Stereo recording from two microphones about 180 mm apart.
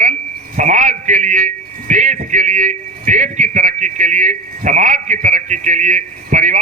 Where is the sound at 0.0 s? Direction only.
45° right (ahead or behind).